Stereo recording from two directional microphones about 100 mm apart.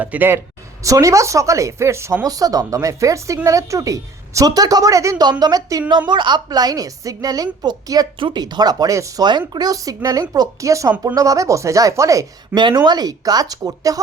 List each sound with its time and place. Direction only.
0.0 s speech: 15° right (ahead or behind); by 5.8 s 35° right (ahead or behind)
6.1 s speech: 50° right (ahead or behind); by 12.2 s 35° right (ahead or behind)
12.5 s speech: 45° right (ahead or behind)